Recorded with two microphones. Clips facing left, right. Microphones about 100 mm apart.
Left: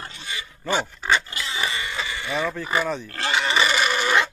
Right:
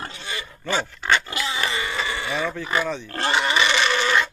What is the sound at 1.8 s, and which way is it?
Livestock, 90° right.